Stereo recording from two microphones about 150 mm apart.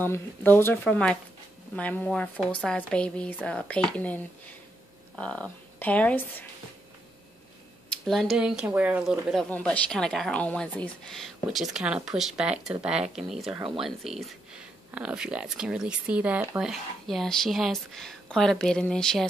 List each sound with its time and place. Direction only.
0.0 s speech: 15° left (ahead or behind)
7.9 s speech: centre (ahead or behind)